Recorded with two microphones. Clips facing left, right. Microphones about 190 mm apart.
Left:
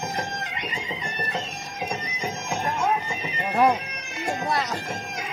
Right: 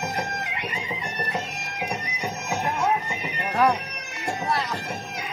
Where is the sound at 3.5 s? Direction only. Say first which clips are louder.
Left 1 dB; 20° left (ahead or behind).